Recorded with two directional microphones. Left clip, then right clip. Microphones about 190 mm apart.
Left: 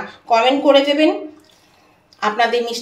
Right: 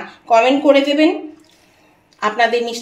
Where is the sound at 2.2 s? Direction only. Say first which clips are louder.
Right 1 dB; 30° right (ahead or behind).